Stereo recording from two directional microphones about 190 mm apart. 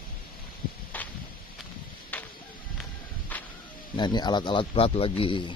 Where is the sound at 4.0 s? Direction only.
20° left (ahead or behind).